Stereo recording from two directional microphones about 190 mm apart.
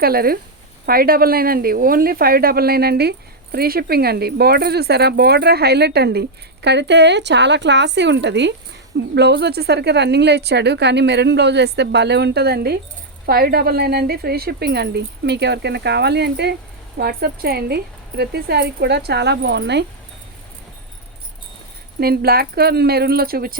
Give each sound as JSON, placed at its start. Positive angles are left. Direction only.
{"t": 0.0, "sound": "a woman's voice", "side_deg": -50}
{"t": 22.0, "sound": "a woman's voice", "side_deg": -55}